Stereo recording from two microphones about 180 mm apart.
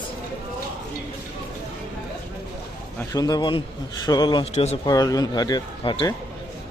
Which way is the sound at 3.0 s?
20° left (ahead or behind).